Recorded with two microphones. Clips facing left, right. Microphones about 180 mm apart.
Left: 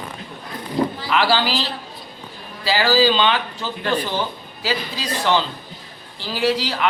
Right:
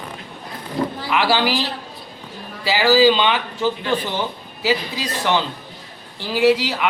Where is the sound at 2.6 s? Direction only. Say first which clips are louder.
Right 3 dB; 15° right (ahead or behind).